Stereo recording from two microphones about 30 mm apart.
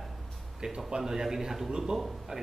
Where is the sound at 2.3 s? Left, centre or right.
Right.